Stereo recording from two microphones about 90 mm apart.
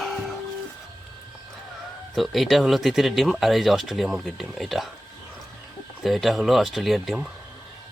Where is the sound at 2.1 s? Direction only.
Centre (ahead or behind).